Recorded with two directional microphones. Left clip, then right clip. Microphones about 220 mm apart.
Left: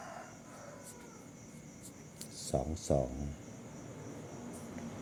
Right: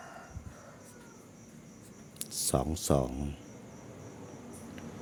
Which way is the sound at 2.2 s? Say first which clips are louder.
Right 5 dB; 35° right (ahead or behind).